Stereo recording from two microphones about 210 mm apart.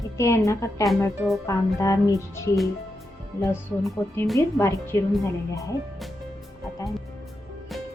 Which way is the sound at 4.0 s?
10° left (ahead or behind).